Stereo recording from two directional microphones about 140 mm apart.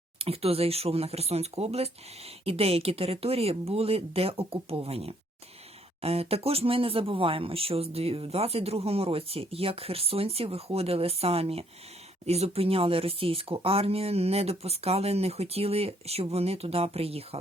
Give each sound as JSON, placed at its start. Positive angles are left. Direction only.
{"t": 0.2, "sound": "speech", "side_deg": -45}